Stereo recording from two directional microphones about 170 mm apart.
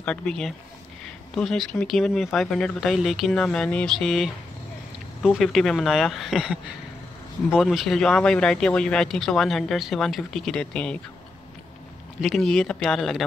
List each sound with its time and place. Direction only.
0.0 s speech: 5° left (ahead or behind)
12.2 s speech: centre (ahead or behind)